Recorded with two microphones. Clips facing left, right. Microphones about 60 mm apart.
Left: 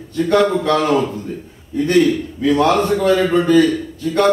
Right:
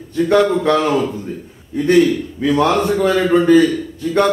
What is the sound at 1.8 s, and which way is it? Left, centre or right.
A man's voice, centre.